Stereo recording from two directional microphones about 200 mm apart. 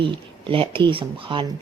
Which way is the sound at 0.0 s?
25° right (ahead or behind).